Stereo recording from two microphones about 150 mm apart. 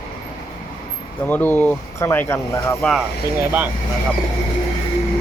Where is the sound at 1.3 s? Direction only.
15° left (ahead or behind).